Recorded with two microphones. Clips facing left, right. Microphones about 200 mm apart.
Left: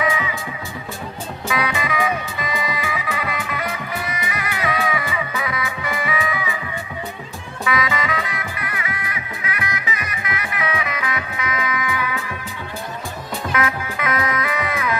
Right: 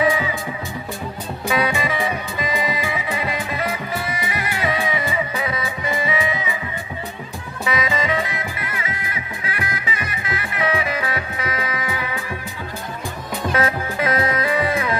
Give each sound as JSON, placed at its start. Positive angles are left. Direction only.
{"t": 0.0, "sound": "music", "side_deg": -30}
{"t": 1.5, "sound": "music", "side_deg": -30}
{"t": 7.6, "sound": "music", "side_deg": -25}
{"t": 13.5, "sound": "music", "side_deg": -35}